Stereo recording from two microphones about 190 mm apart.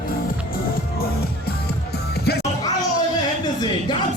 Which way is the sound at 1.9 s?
55° left (ahead or behind).